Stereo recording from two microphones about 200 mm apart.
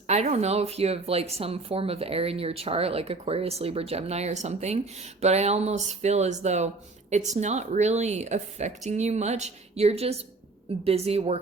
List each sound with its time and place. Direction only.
0.1 s speech: 35° right (ahead or behind)